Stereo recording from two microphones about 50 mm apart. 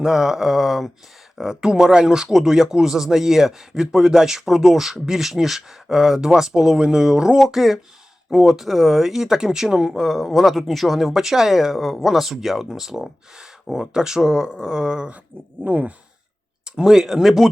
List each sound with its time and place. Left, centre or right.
0.0 s a man's voice: centre
15.6 s speech: right
16.6 s a man's voice: centre